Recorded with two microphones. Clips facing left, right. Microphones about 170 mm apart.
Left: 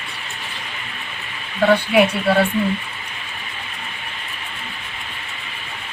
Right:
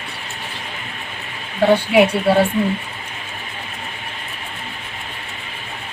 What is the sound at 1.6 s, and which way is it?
Speech, 25° right (ahead or behind).